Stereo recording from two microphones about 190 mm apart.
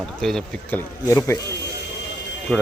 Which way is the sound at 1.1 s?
15° left (ahead or behind).